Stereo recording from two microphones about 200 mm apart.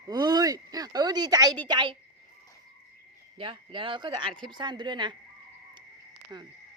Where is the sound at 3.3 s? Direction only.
25° right (ahead or behind).